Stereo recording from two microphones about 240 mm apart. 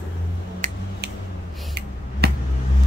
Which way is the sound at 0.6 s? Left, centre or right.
Right.